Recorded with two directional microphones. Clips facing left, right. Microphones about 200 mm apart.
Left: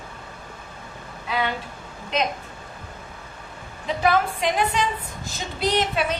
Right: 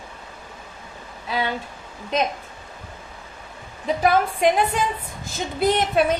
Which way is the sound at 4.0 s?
50° right (ahead or behind).